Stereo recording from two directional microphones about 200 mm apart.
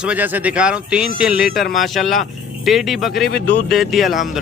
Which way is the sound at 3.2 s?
55° left (ahead or behind).